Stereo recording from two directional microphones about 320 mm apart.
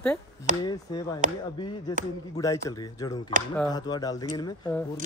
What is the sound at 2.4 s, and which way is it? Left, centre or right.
Speech, centre.